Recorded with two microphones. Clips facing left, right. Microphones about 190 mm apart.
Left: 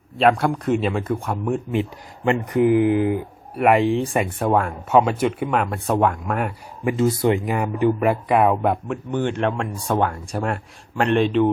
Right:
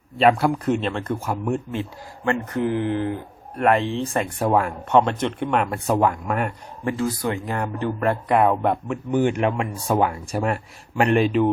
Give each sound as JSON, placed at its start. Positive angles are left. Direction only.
{"t": 0.2, "sound": "a man's voice", "side_deg": 0}
{"t": 1.7, "sound": "speech", "side_deg": 20}
{"t": 4.4, "sound": "a man's voice", "side_deg": 0}
{"t": 6.8, "sound": "speech", "side_deg": 20}
{"t": 7.3, "sound": "a man's voice", "side_deg": 10}